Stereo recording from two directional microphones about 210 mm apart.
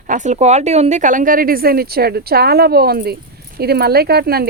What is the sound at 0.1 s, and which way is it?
Speech, 35° right (ahead or behind).